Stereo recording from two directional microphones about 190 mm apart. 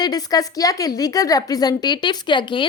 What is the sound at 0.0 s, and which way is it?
A woman's voice, 20° left (ahead or behind).